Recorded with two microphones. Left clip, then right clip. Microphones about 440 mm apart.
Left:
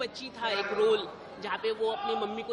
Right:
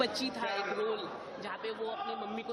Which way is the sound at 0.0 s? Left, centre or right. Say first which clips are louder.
Right 1 dB; centre.